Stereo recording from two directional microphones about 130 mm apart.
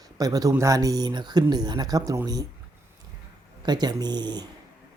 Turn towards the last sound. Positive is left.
turn(degrees=-35)  # may be behind; listen again after turning